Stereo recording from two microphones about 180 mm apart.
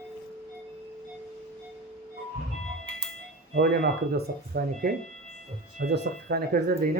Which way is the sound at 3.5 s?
60° right (ahead or behind).